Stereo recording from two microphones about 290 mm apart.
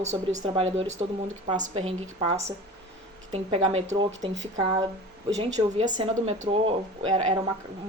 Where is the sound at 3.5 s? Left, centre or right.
Right.